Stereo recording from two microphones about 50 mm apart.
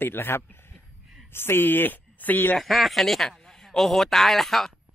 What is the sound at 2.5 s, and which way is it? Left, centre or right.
Speech, centre.